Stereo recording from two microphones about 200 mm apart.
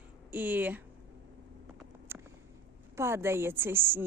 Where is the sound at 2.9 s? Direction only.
15° right (ahead or behind).